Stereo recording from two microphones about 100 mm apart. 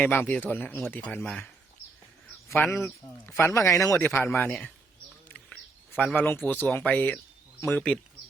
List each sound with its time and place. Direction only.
0.0 s speech: 20° left (ahead or behind)
1.2 s speech: 5° left (ahead or behind)
2.6 s speech: 25° left (ahead or behind)
3.9 s speech: 20° left (ahead or behind)
5.3 s bird: 15° left (ahead or behind)
6.2 s speech: 20° left (ahead or behind)